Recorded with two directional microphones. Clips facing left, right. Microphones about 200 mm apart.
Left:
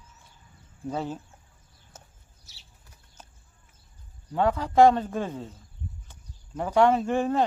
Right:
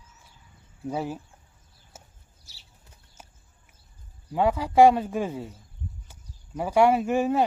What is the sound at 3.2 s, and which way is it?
Clip-clop, 10° right (ahead or behind).